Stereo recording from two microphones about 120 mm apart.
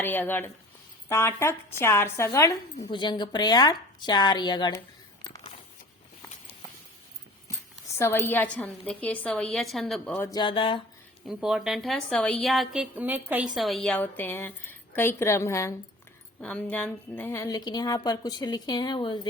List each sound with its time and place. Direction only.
0.0 s a woman's voice: 15° left (ahead or behind)
2.9 s speech: 40° left (ahead or behind)
7.9 s a woman's voice: 20° left (ahead or behind); by 10.2 s 5° left (ahead or behind)
10.3 s speech: 45° left (ahead or behind)
11.3 s a woman's voice: 5° right (ahead or behind); by 15.7 s 25° left (ahead or behind)
16.4 s a woman's voice: 10° left (ahead or behind)
17.3 s speech: 25° left (ahead or behind)